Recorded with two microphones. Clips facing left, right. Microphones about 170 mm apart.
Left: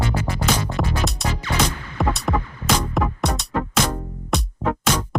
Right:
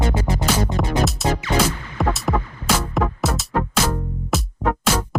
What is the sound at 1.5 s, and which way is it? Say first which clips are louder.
Music: right 2 dB; 20° right (ahead or behind).